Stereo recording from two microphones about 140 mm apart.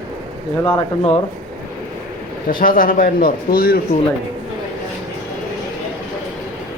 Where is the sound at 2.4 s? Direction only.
80° left.